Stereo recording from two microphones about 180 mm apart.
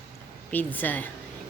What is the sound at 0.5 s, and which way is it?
Speech, 10° left (ahead or behind).